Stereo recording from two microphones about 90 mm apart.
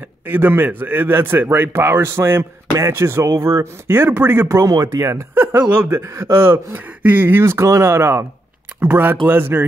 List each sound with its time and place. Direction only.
0.3 s a man's voice: 20° right (ahead or behind)
4.5 s speech: 35° right (ahead or behind)
5.3 s a man's voice: 20° right (ahead or behind)